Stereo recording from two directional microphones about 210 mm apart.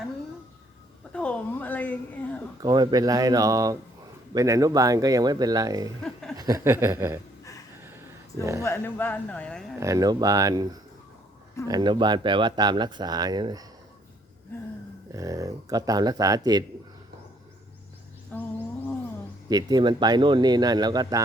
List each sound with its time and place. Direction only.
1.1 s a sound: 5° left (ahead or behind)
2.6 s speech: 20° right (ahead or behind)
6.0 s a sound: centre (ahead or behind)
6.3 s speech: 15° right (ahead or behind)
8.4 s speech: 15° right (ahead or behind)
8.6 s speech: 10° left (ahead or behind)
9.8 s speech: 15° right (ahead or behind)
15.1 s speech: 15° right (ahead or behind)
18.3 s humming: 10° left (ahead or behind)
19.5 s speech: 20° right (ahead or behind)